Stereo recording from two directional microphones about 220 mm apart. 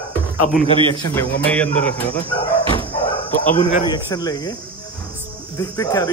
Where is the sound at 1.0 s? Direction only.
10° left (ahead or behind).